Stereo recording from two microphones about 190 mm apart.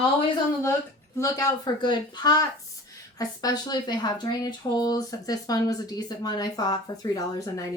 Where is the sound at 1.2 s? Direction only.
20° left (ahead or behind).